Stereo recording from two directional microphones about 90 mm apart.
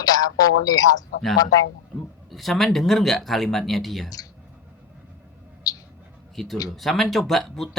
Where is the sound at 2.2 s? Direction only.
Centre (ahead or behind).